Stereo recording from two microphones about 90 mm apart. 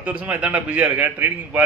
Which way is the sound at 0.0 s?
15° right (ahead or behind).